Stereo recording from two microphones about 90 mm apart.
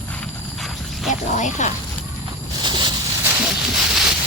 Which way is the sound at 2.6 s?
55° right (ahead or behind).